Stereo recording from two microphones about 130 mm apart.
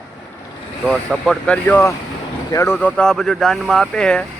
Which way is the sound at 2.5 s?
25° left (ahead or behind).